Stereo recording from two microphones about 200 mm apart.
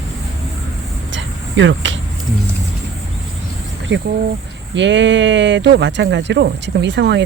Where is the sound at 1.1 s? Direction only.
65° right (ahead or behind).